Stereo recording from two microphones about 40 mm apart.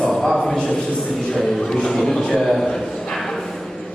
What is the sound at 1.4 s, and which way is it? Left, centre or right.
A man's voice, centre.